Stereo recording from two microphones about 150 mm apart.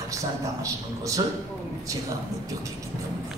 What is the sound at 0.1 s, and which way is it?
A man's voice, 20° right (ahead or behind).